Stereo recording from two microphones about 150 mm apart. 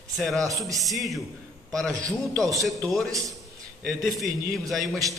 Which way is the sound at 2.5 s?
Centre (ahead or behind).